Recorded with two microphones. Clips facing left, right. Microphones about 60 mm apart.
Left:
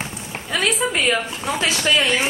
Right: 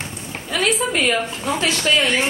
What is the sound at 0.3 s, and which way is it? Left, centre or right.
A woman's voice, centre.